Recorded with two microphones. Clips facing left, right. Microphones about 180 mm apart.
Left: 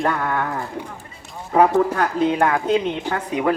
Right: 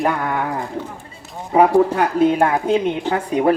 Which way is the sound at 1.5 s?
15° right (ahead or behind).